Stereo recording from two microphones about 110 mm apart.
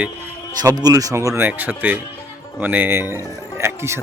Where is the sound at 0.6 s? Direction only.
35° right (ahead or behind).